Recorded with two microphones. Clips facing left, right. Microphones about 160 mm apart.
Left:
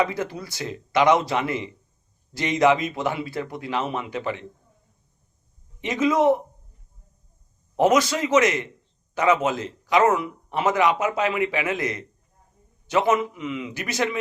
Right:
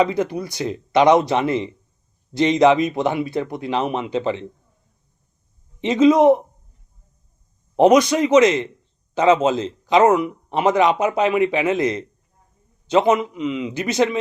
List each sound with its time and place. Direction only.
0.0 s speech: 20° right (ahead or behind)
5.8 s speech: 20° right (ahead or behind)
7.8 s speech: 20° right (ahead or behind)